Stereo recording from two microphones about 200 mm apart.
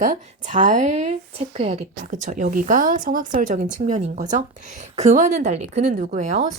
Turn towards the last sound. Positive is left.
turn(degrees=-35)  # may be behind; listen again after turning